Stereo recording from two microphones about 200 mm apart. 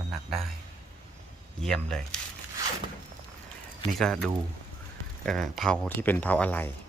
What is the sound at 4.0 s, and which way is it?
Speech, 5° left (ahead or behind).